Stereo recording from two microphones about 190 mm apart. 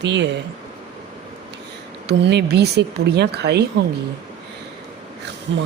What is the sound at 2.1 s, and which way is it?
Speech, 60° right (ahead or behind).